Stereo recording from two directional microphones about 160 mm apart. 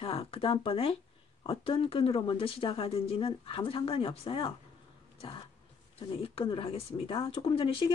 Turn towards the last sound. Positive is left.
turn(degrees=35)  # may be behind; listen again after turning